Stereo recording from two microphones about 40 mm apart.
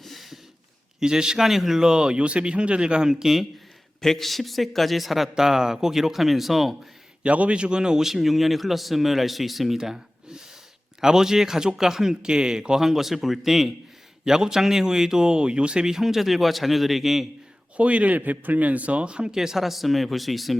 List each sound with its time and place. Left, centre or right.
0.0 s a sound: centre
0.9 s speech: centre
1.5 s speech: centre
1.9 s speech: right
4.0 s speech: centre
5.4 s speech: centre
7.2 s speech: right
8.0 s speech: centre
9.7 s speech: centre
17.7 s speech: right
19.3 s speech: centre